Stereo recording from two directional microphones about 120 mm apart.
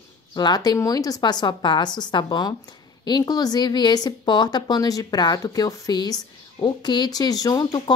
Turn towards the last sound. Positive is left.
turn(degrees=30)  # may be behind; listen again after turning